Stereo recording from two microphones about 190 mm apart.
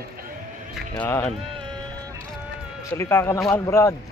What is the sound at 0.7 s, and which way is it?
Speech, 10° left (ahead or behind).